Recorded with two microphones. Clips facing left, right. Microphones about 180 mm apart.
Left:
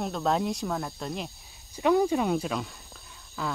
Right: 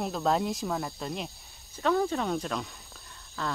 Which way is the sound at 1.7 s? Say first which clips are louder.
Left 4 dB; 15° left (ahead or behind).